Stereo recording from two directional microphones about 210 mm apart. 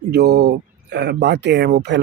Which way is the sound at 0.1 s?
50° right (ahead or behind).